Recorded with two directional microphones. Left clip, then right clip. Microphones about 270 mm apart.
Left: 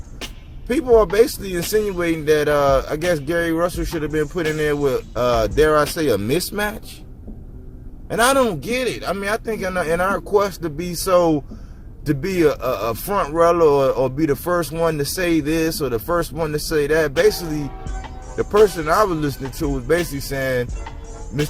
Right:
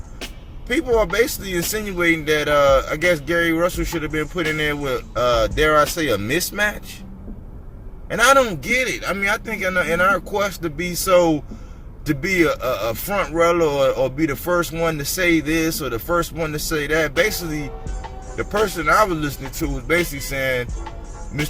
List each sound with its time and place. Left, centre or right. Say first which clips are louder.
0.7 s speech: left 3 dB; left
8.1 s speech: right 2 dB; left
18.8 s speech: right 1 dB; left